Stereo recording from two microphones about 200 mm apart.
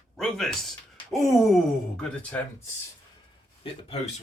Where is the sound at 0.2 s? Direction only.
Centre (ahead or behind).